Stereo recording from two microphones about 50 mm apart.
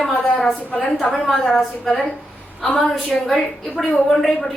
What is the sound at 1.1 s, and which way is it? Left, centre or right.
Speech, centre.